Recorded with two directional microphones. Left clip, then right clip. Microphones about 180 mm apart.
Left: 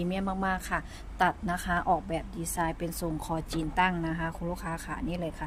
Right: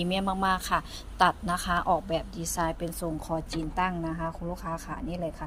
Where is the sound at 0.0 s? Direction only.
10° left (ahead or behind).